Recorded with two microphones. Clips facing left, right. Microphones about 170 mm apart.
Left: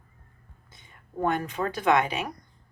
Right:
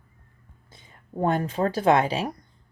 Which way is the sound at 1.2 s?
30° right (ahead or behind).